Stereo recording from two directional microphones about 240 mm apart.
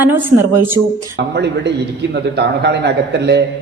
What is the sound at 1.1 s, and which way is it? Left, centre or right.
A man's voice, right.